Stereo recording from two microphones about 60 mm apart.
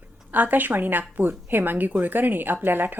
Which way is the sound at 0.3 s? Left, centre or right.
Right.